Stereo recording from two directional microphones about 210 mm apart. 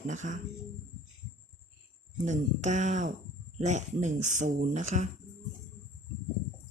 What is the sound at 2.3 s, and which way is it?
Speech, 35° right (ahead or behind).